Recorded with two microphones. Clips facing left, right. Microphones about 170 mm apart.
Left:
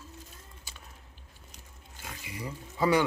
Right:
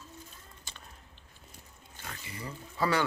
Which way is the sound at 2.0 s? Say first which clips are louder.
Left 2 dB; 10° left (ahead or behind).